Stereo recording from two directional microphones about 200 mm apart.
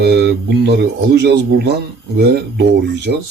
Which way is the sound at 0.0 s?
55° right (ahead or behind).